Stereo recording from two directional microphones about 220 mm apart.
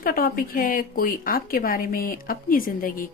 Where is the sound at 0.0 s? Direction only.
40° left (ahead or behind).